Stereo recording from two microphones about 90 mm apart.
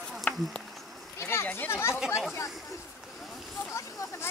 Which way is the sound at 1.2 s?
30° left (ahead or behind).